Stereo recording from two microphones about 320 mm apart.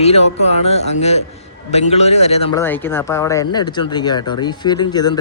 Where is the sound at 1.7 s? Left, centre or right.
Centre.